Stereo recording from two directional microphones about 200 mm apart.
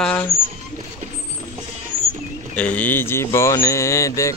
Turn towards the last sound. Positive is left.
turn(degrees=15)  # may be behind; listen again after turning